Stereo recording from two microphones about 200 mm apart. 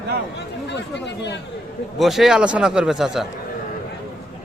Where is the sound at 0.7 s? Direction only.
60° left (ahead or behind).